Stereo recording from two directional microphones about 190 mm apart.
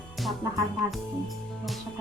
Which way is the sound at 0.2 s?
Centre (ahead or behind).